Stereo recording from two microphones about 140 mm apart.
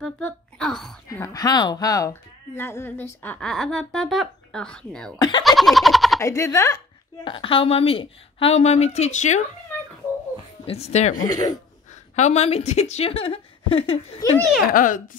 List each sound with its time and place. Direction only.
0.0 s a child's voice: 5° left (ahead or behind)
1.0 s speech: 25° left (ahead or behind); by 6.2 s centre (ahead or behind)
6.2 s speech: 20° left (ahead or behind)
7.2 s a woman's voice: 40° left (ahead or behind); by 9.4 s 60° left (ahead or behind)
10.6 s speech: 45° left (ahead or behind)
11.2 s speech: 30° left (ahead or behind)
12.2 s a woman's voice: 50° left (ahead or behind)
14.7 s a child's voice: 75° left (ahead or behind)